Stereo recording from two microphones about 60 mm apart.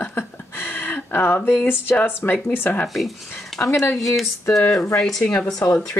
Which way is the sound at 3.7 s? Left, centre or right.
Left.